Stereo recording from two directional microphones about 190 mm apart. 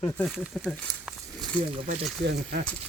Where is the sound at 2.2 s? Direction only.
55° right (ahead or behind).